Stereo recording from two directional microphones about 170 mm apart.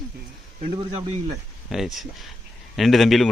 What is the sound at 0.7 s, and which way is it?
Speech, 35° right (ahead or behind).